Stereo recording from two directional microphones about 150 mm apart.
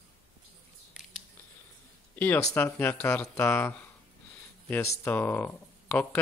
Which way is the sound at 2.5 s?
15° left (ahead or behind).